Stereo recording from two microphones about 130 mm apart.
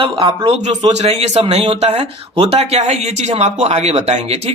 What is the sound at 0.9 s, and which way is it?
Speech, 55° right (ahead or behind).